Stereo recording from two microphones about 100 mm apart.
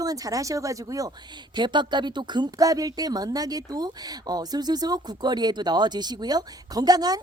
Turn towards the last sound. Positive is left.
turn(degrees=-40)  # may be behind; listen again after turning